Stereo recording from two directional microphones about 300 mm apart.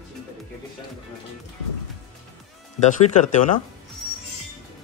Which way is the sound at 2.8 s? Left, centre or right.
Left.